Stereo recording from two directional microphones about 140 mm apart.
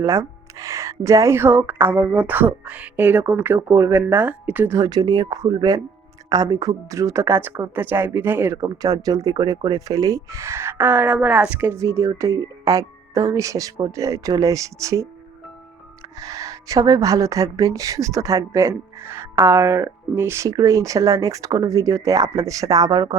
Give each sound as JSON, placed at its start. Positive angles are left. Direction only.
{"t": 0.0, "sound": "speech", "side_deg": -20}
{"t": 4.9, "sound": "speech", "side_deg": -30}
{"t": 8.6, "sound": "speech", "side_deg": -25}
{"t": 16.1, "sound": "speech", "side_deg": -25}